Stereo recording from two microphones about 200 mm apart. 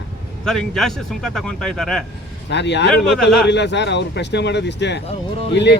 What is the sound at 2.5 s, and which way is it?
Speech, 60° left (ahead or behind).